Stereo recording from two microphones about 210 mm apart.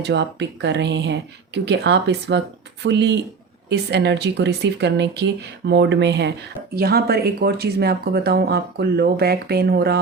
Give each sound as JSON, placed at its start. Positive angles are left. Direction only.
{"t": 0.0, "sound": "speech", "side_deg": -55}